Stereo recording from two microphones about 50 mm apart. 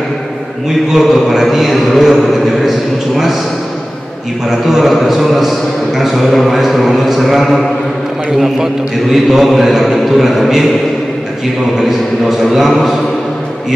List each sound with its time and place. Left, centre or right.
0.9 s a man's voice: centre
4.5 s a man's voice: centre
9.1 s a man's voice: centre
12.3 s a man's voice: centre